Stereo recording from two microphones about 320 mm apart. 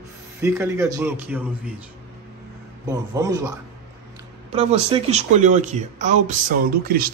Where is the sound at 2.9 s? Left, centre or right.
Centre.